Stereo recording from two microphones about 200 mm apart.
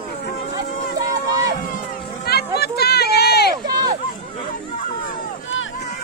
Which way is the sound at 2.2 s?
50° left (ahead or behind).